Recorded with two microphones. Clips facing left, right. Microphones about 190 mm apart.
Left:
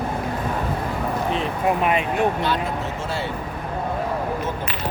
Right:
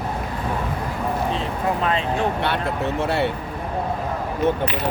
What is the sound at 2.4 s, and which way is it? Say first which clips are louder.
Speech: right 1 dB; 65° right (ahead or behind).